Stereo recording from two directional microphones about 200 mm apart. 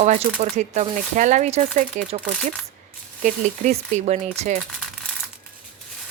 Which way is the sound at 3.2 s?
35° right (ahead or behind).